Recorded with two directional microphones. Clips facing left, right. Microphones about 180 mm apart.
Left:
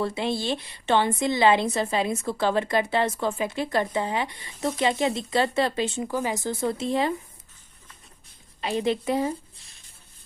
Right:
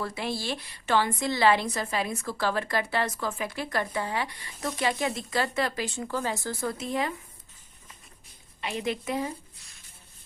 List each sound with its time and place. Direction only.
0.0 s a woman's voice: 25° left (ahead or behind)
8.6 s a woman's voice: 30° left (ahead or behind)